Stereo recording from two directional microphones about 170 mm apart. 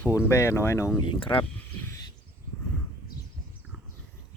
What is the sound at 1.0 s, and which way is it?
Speech, 30° left (ahead or behind).